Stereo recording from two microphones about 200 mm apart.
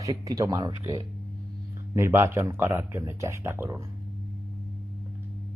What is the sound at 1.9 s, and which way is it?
Speech, 15° right (ahead or behind).